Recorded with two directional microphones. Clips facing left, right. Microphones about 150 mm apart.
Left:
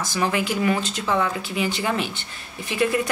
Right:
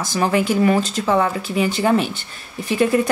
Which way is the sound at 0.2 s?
40° right (ahead or behind).